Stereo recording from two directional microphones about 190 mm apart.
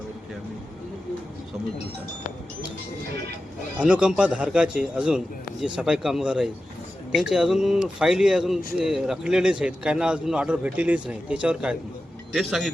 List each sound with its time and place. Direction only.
3.8 s a man's voice: 5° right (ahead or behind)